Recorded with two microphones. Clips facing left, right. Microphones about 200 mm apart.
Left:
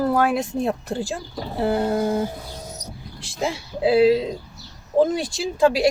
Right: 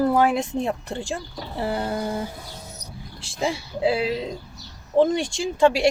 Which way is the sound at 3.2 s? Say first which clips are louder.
Even; centre (ahead or behind).